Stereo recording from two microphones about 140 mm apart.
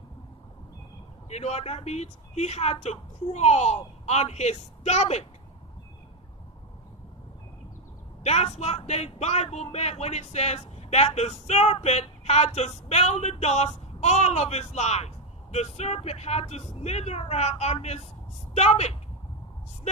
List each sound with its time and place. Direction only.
1.3 s a man's voice: 50° left (ahead or behind)
8.2 s a man's voice: 50° left (ahead or behind)